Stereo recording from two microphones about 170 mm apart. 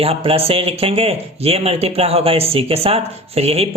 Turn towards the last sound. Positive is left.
turn(degrees=-35)  # may be behind; listen again after turning